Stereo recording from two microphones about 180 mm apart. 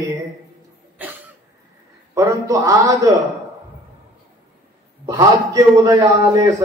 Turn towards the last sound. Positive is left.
turn(degrees=-20)  # may be behind; listen again after turning